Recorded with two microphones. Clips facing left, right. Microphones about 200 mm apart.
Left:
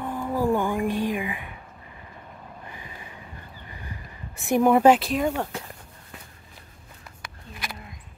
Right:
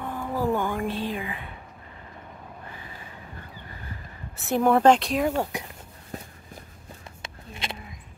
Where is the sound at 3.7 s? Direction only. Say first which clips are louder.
Even; 15° left (ahead or behind); by 5.4 s centre (ahead or behind).